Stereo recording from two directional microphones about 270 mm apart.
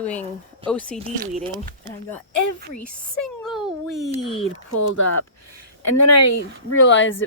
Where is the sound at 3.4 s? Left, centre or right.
Centre.